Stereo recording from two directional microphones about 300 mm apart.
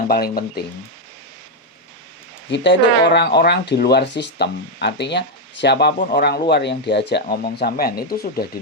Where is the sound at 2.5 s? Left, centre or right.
Left.